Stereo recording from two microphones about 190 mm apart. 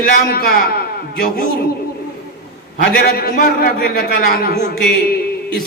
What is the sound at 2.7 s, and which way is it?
A man's voice, 55° left (ahead or behind).